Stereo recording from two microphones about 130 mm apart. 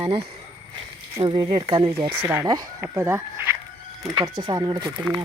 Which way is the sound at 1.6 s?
45° right (ahead or behind).